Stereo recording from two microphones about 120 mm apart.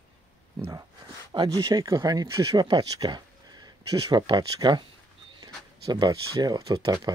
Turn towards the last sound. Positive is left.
turn(degrees=-30)  # may be behind; listen again after turning